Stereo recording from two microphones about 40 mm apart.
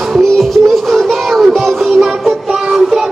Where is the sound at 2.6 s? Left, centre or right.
Centre.